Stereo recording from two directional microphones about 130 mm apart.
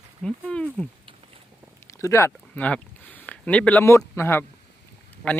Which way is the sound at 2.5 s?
10° left (ahead or behind).